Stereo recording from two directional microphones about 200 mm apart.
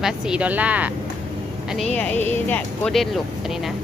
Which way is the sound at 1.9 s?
10° left (ahead or behind).